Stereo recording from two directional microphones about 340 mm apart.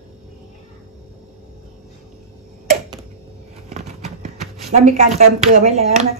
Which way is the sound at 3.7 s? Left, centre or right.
Centre.